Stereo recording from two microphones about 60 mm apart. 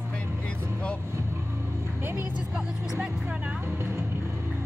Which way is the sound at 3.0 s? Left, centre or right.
Right.